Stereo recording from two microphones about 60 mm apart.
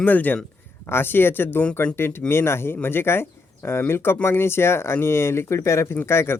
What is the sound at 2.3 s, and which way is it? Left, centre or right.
Speech, left.